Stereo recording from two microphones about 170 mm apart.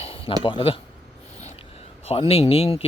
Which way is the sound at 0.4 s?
30° left (ahead or behind).